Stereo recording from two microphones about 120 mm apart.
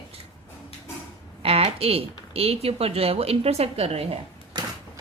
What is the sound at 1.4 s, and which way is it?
Speech, 55° right (ahead or behind).